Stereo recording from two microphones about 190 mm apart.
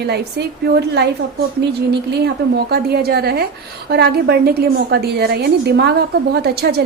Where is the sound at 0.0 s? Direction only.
60° right (ahead or behind).